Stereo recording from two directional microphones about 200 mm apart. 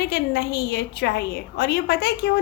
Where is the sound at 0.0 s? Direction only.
55° left (ahead or behind).